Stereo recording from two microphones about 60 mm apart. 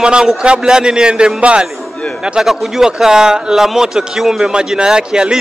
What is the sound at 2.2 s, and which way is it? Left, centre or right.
Speech, centre.